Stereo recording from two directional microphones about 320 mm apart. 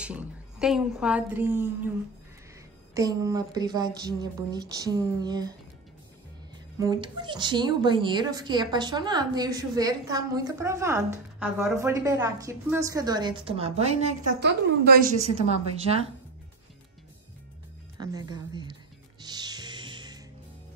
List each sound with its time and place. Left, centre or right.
0.0 s a woman's voice: centre
2.9 s speech: centre
6.8 s speech: centre
14.4 s a woman's voice: right
17.9 s speech: centre
19.2 s music: centre